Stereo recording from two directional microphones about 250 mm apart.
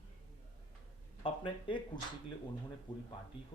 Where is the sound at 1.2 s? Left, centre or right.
Centre.